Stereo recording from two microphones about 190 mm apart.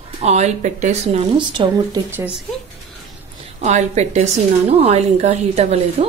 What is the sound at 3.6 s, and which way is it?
A woman's voice, 40° right (ahead or behind).